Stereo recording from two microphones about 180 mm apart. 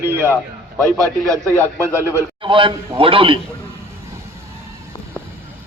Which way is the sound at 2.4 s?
30° right (ahead or behind).